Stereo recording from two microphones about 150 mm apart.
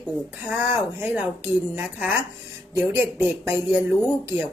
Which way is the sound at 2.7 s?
15° right (ahead or behind).